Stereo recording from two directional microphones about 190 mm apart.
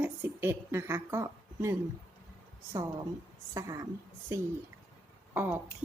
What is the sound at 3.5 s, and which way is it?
A woman's voice, 15° right (ahead or behind).